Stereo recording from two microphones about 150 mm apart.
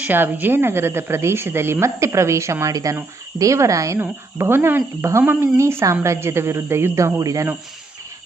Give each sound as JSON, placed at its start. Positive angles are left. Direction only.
{"t": 0.0, "sound": "speech", "side_deg": -10}